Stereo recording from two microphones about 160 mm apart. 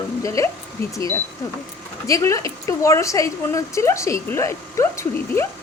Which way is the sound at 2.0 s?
20° left (ahead or behind).